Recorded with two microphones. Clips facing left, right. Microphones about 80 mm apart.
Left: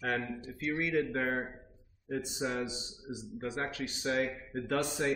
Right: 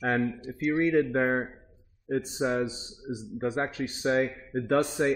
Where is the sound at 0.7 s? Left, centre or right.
Right.